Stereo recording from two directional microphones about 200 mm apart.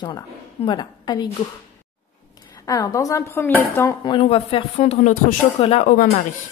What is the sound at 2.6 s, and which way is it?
A woman's voice, 15° left (ahead or behind).